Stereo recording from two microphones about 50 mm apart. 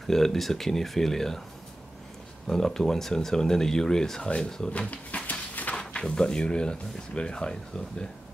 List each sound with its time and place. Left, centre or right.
0.0 s speech: centre
2.4 s speech: centre
4.7 s dog: left
5.8 s speech: centre